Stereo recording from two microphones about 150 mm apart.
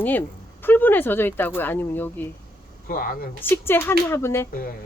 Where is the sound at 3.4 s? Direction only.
15° left (ahead or behind).